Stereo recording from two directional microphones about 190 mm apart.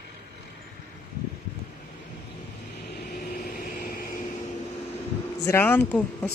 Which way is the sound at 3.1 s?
50° left (ahead or behind).